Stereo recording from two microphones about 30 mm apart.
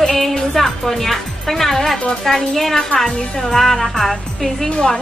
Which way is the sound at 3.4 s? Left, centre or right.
Centre.